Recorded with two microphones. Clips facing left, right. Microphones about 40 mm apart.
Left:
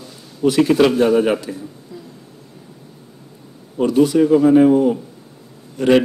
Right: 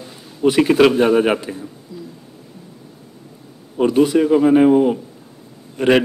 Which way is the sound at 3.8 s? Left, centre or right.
Right.